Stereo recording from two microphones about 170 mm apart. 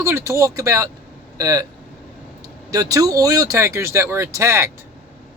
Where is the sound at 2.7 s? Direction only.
20° right (ahead or behind).